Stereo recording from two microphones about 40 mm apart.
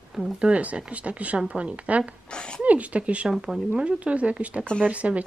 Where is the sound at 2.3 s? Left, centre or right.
Left.